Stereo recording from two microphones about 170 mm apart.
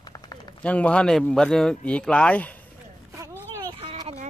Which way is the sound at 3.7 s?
30° right (ahead or behind).